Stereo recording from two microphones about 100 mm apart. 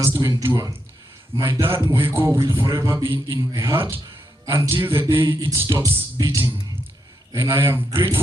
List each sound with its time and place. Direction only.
0.1 s speech: 40° right (ahead or behind)
0.4 s a man's voice: 30° right (ahead or behind)